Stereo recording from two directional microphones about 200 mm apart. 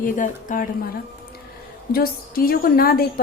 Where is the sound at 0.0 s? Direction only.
40° left (ahead or behind).